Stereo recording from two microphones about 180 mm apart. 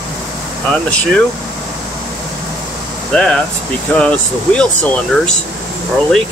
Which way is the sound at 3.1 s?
5° left (ahead or behind).